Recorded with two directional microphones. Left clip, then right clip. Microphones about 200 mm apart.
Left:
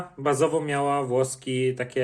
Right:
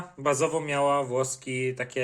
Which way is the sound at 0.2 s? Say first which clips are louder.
Left 2 dB; 5° right (ahead or behind).